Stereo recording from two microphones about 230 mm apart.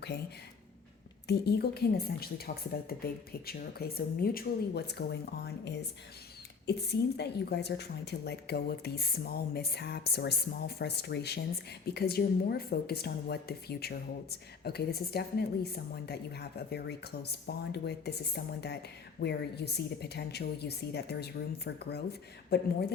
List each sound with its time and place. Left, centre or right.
1.3 s a woman's voice: left